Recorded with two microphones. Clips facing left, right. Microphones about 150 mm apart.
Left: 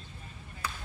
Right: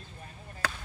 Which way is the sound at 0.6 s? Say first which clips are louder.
Right 4 dB; 80° right.